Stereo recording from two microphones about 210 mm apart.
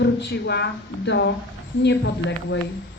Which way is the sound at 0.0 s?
55° left (ahead or behind).